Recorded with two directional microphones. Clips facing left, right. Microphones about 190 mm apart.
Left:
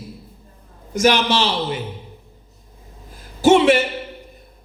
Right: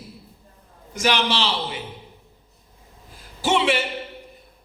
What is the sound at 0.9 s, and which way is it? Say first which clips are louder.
Speech: left 6 dB; 45° left (ahead or behind).